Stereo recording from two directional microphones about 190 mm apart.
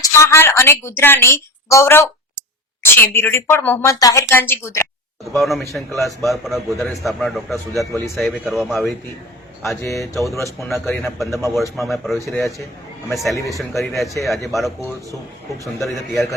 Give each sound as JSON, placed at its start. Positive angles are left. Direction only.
{"t": 0.0, "sound": "a woman's voice", "side_deg": 15}
{"t": 5.3, "sound": "a man's voice", "side_deg": 0}
{"t": 7.7, "sound": "speech", "side_deg": -15}
{"t": 8.1, "sound": "a man's voice", "side_deg": 0}
{"t": 9.9, "sound": "a man's voice", "side_deg": 0}
{"t": 12.2, "sound": "a woman's voice", "side_deg": 15}
{"t": 13.6, "sound": "a man's voice", "side_deg": 0}